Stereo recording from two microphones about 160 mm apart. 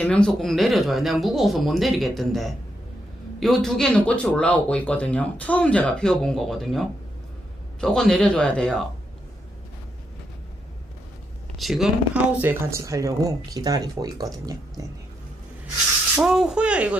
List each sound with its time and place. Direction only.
0.0 s speech: 5° left (ahead or behind)
11.5 s speech: centre (ahead or behind); by 14.9 s 20° right (ahead or behind)
16.2 s speech: 5° right (ahead or behind)